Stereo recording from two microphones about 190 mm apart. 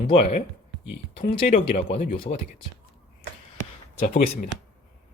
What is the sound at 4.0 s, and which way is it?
Speech, 50° left (ahead or behind).